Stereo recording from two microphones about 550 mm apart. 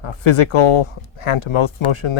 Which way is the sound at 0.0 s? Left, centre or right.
Left.